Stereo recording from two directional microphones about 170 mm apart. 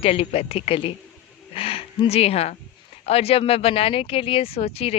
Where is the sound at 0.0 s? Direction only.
35° left (ahead or behind).